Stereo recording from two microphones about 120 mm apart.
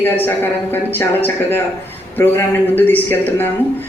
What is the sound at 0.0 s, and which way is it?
Speech, 15° left (ahead or behind).